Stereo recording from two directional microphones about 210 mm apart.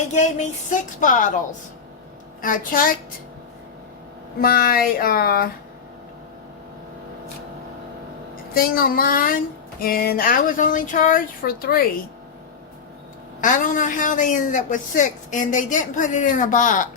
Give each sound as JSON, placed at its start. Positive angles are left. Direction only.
{"t": 0.1, "sound": "a woman's voice", "side_deg": 35}
{"t": 2.4, "sound": "a woman's voice", "side_deg": 40}
{"t": 4.4, "sound": "speech", "side_deg": 45}
{"t": 8.5, "sound": "speech", "side_deg": 45}
{"t": 13.4, "sound": "a woman's voice", "side_deg": 40}